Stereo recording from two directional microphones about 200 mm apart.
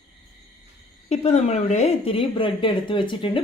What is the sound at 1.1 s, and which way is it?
A woman's voice, 35° left (ahead or behind).